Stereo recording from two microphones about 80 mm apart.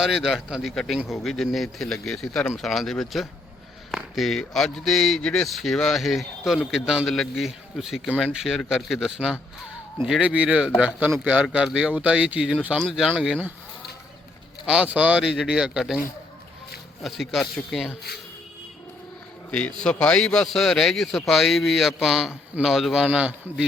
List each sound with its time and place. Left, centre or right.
0.0 s a man's voice: centre
14.6 s speech: centre
17.0 s speech: centre
19.5 s speech: centre
23.0 s speech: centre